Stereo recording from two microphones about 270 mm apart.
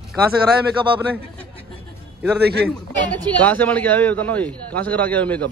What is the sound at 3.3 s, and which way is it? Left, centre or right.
A man's voice, centre.